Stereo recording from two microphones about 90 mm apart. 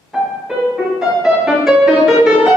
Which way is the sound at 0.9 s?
5° right (ahead or behind).